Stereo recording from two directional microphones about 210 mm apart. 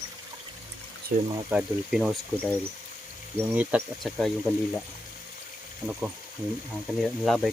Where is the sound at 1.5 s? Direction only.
5° right (ahead or behind).